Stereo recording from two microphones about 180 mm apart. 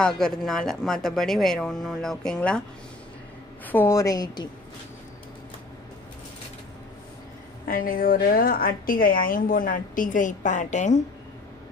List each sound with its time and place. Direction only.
0.0 s speech: 5° left (ahead or behind)
3.6 s a woman's voice: 10° left (ahead or behind)
7.6 s a woman's voice: 50° left (ahead or behind)